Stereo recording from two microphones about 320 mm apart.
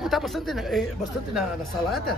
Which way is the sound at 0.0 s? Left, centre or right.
Centre.